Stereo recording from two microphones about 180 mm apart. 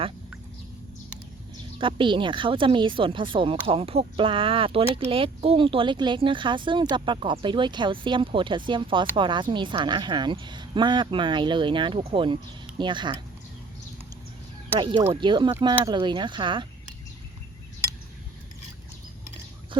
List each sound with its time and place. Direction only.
1.8 s speech: 25° right (ahead or behind)
15.2 s speech: 25° right (ahead or behind)